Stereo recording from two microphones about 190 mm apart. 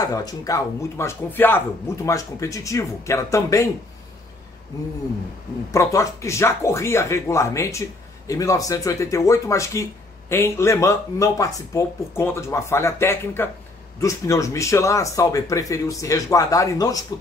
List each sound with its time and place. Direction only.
0.0 s speech: 20° left (ahead or behind)
5.7 s speech: 15° left (ahead or behind)